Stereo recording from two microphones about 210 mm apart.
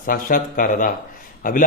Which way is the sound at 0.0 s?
40° left (ahead or behind).